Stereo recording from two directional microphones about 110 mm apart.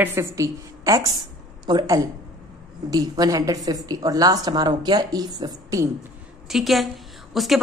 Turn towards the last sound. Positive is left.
turn(degrees=0)  # may be behind; listen again after turning